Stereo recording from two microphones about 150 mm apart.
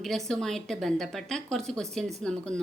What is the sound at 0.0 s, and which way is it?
A woman's voice, centre (ahead or behind).